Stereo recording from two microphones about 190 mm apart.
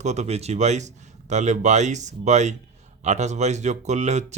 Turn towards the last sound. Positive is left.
turn(degrees=-35)  # may be behind; listen again after turning